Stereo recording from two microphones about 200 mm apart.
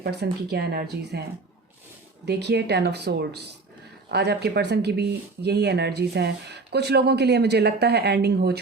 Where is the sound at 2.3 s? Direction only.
55° right (ahead or behind).